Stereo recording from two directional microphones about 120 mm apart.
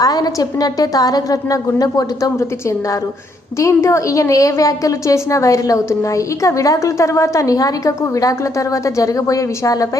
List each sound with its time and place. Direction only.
0.0 s a woman's voice: 30° left (ahead or behind)